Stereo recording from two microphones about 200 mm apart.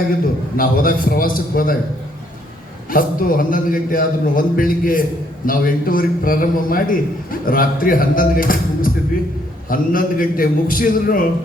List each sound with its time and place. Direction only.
0.5 s a man's voice: 45° left (ahead or behind)
2.9 s a man's voice: 45° left (ahead or behind)